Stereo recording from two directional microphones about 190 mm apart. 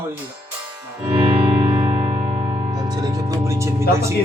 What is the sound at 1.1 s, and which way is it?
Music, 25° right (ahead or behind).